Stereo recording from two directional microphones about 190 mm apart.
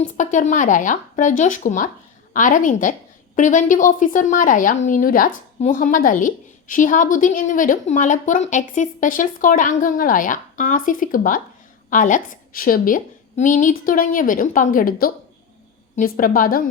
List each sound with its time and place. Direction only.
0.0 s speech: 40° left (ahead or behind)